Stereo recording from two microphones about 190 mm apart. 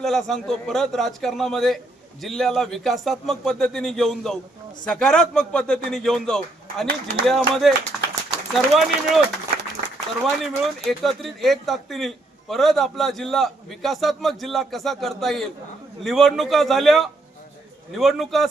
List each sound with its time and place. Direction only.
0.0 s a man's voice: centre (ahead or behind)
7.9 s a sound: centre (ahead or behind)
8.5 s a man's voice: centre (ahead or behind)
10.2 s a man's voice: centre (ahead or behind)